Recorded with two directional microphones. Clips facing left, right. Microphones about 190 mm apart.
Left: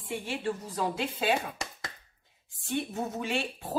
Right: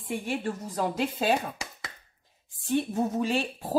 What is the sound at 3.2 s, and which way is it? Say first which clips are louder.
Speech: right 3 dB; 35° right (ahead or behind).